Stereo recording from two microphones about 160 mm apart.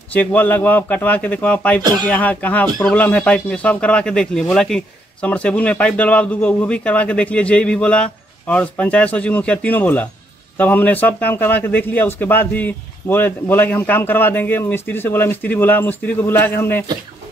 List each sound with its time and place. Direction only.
0.1 s speech: 10° left (ahead or behind)
1.8 s speech: 25° right (ahead or behind)
2.0 s speech: 10° left (ahead or behind)